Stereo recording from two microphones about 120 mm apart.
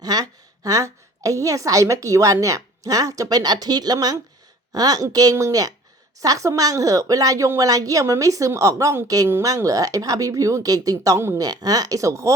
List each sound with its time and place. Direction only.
0.0 s a woman's voice: 30° right (ahead or behind)